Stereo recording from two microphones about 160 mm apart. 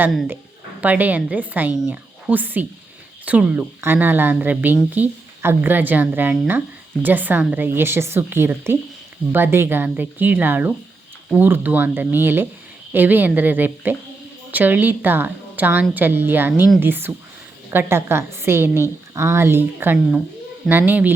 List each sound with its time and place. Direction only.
0.8 s a woman's voice: 10° right (ahead or behind)